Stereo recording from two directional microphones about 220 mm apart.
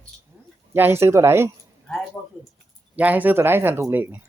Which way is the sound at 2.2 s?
20° left (ahead or behind).